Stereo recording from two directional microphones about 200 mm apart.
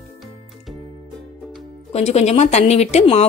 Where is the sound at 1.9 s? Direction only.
30° left (ahead or behind).